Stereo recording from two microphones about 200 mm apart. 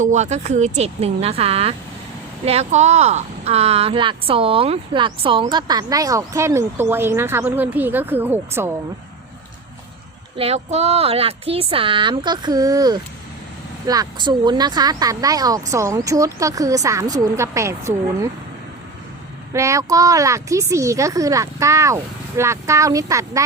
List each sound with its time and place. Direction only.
0.0 s speech: 35° right (ahead or behind); by 8.7 s 10° right (ahead or behind)
10.3 s speech: 30° right (ahead or behind); by 18.3 s 15° right (ahead or behind)
19.5 s speech: 15° right (ahead or behind)